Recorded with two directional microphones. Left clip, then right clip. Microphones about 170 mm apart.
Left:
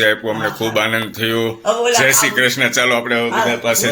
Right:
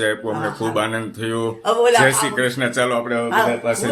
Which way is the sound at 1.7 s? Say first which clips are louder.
Right 1 dB; 25° right (ahead or behind).